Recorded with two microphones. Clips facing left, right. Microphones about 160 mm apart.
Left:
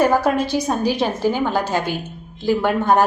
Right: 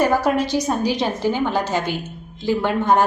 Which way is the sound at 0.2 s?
15° right (ahead or behind).